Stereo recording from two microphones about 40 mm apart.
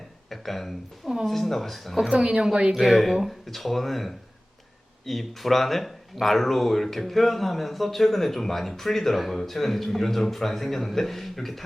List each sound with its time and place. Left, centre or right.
0.3 s speech: centre
2.0 s a woman's voice: centre
2.7 s speech: centre